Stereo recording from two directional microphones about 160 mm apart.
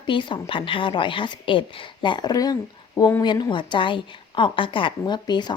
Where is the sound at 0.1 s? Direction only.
30° left (ahead or behind).